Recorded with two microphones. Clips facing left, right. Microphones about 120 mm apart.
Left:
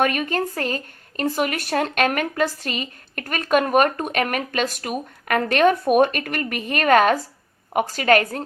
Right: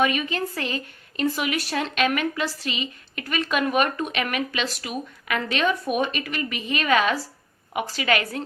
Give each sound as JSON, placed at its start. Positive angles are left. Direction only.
{"t": 0.0, "sound": "speech", "side_deg": 50}